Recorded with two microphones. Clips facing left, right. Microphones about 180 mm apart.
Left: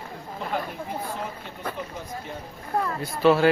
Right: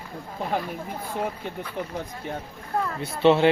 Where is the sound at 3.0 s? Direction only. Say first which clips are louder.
Right 1 dB; 25° right (ahead or behind).